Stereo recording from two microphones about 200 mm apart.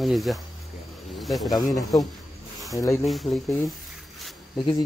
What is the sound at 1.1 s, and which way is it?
Speech, centre (ahead or behind).